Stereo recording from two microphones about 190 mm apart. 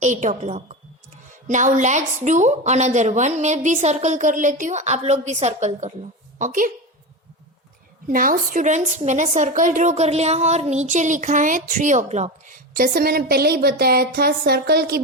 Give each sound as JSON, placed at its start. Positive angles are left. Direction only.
{"t": 0.0, "sound": "a woman's voice", "side_deg": -40}
{"t": 8.0, "sound": "a woman's voice", "side_deg": -45}